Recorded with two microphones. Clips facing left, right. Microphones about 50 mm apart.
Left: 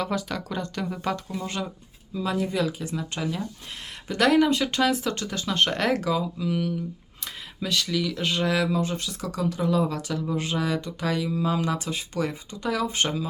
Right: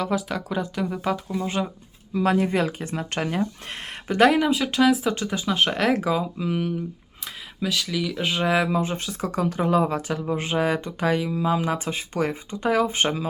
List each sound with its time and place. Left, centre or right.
0.0 s speech: centre
1.5 s speech: right
2.1 s speech: right
4.3 s speech: centre
6.1 s speech: right
7.6 s speech: centre; by 13.2 s right